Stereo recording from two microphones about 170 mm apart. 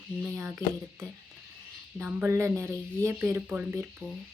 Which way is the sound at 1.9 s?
10° right (ahead or behind).